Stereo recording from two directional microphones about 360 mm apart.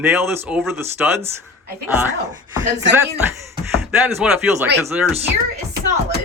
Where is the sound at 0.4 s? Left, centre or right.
Centre.